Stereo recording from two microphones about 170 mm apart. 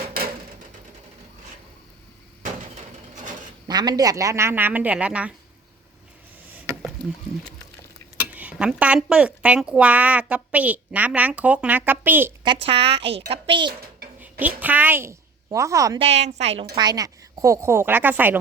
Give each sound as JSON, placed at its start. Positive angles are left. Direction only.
{"t": 3.7, "sound": "speech", "side_deg": -25}
{"t": 8.3, "sound": "speech", "side_deg": -10}
{"t": 12.6, "sound": "a woman's voice", "side_deg": -35}
{"t": 14.2, "sound": "a woman's voice", "side_deg": -10}
{"t": 16.0, "sound": "a woman's voice", "side_deg": -40}
{"t": 16.7, "sound": "speech", "side_deg": -25}